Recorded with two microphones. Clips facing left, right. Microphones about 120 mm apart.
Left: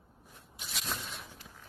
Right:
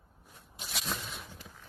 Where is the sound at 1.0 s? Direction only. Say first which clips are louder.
Right 1 dB; centre (ahead or behind).